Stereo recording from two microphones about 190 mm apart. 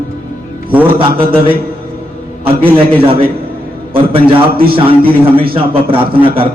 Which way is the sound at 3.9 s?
30° right (ahead or behind).